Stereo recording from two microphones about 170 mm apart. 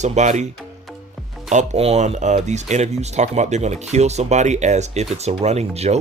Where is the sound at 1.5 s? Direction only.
40° right (ahead or behind).